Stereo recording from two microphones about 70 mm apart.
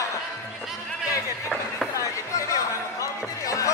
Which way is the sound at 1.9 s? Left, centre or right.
Left.